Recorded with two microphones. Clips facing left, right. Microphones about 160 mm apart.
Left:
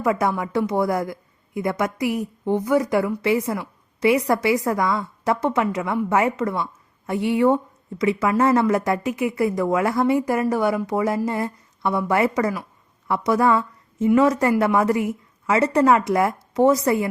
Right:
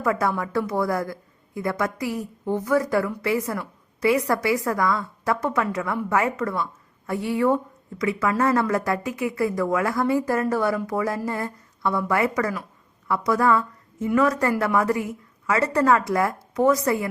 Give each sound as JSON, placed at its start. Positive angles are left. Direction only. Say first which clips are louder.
{"t": 0.0, "sound": "a woman's voice", "louder": "left 2 dB", "side_deg": 20}